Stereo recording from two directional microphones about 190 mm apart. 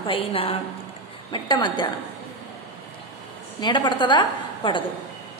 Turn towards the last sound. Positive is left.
turn(degrees=25)  # may be behind; listen again after turning